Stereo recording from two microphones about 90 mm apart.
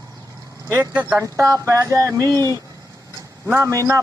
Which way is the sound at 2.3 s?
30° left (ahead or behind).